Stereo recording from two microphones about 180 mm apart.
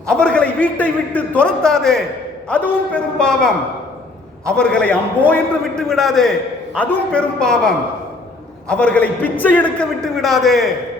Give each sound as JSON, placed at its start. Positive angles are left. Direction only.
{"t": 0.1, "sound": "a man's voice", "side_deg": 5}